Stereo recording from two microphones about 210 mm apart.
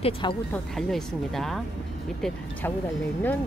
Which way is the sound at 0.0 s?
25° left (ahead or behind).